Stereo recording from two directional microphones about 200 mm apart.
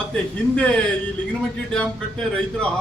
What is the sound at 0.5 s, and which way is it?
A man's voice, 5° left (ahead or behind).